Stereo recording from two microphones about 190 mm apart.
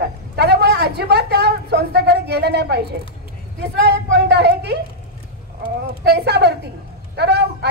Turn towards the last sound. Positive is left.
turn(degrees=-60)  # may be behind; listen again after turning